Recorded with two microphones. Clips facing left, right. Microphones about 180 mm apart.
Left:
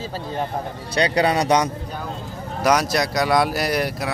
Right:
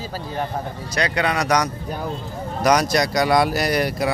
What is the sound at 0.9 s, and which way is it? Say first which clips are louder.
Speech: left 3 dB; 30° left (ahead or behind).